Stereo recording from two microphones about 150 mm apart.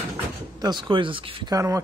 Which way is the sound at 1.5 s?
20° right (ahead or behind).